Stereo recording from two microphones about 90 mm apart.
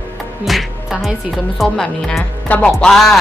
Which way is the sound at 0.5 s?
Centre (ahead or behind).